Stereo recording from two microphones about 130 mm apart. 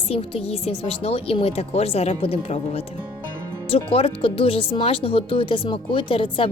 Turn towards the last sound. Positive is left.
turn(degrees=45)  # may be behind; listen again after turning